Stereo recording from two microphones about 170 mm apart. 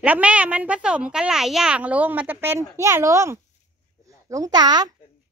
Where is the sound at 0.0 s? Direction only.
10° right (ahead or behind); by 4.9 s 25° right (ahead or behind).